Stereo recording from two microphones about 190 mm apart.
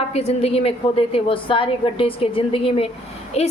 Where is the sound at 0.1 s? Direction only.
35° left (ahead or behind).